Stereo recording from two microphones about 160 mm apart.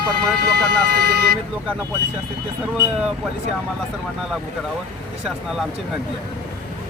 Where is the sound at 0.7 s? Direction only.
90° right.